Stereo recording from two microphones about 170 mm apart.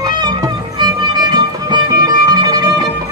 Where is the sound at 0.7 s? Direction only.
25° right (ahead or behind).